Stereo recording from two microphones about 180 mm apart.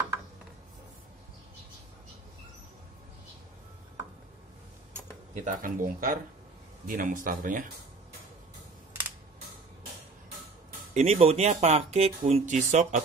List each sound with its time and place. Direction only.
5.3 s speech: 45° right (ahead or behind)
10.9 s speech: 40° right (ahead or behind)